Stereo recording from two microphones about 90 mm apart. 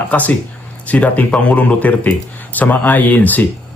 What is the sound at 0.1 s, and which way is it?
Speech, 15° left (ahead or behind).